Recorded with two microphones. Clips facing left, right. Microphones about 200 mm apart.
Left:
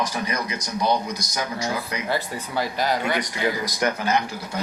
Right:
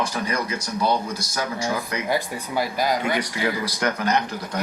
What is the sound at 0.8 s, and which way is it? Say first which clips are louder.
Speech: even; 15° left (ahead or behind).